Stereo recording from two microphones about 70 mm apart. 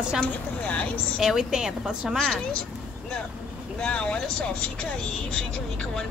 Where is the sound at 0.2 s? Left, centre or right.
Centre.